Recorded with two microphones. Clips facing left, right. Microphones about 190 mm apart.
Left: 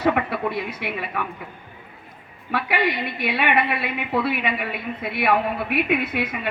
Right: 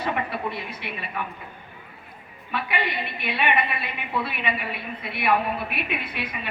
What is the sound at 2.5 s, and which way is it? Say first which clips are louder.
A woman's voice: left 5 dB; 70° left (ahead or behind).